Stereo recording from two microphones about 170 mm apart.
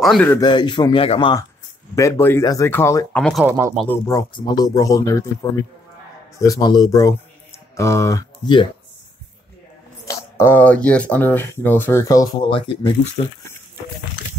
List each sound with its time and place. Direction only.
0.0 s speech: centre (ahead or behind)
0.3 s speech: 25° left (ahead or behind)
2.0 s speech: 15° left (ahead or behind)
3.2 s speech: 5° left (ahead or behind)
3.4 s speech: 15° right (ahead or behind)
3.8 s speech: 15° left (ahead or behind)
10.0 s speech: 15° left (ahead or behind)
12.4 s speech: 30° left (ahead or behind)